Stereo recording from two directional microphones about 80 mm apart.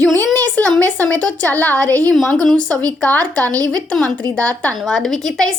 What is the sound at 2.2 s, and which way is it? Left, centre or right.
A woman's voice, centre.